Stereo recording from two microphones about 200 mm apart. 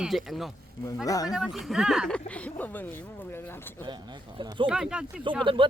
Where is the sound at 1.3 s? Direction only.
Centre (ahead or behind).